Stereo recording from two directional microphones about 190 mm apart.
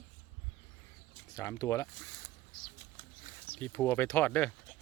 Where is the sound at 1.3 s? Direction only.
15° left (ahead or behind).